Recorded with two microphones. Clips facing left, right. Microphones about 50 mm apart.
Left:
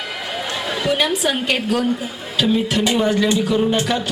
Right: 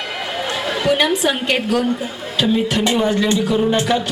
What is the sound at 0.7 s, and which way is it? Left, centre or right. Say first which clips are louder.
Music: right 3 dB; centre.